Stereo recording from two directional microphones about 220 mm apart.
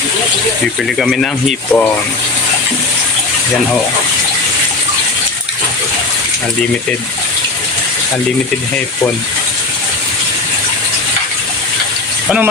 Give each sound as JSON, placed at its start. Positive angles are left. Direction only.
{"t": 0.9, "sound": "speech", "side_deg": 0}